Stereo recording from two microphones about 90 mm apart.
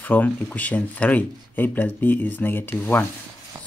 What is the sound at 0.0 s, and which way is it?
Speech, 20° left (ahead or behind).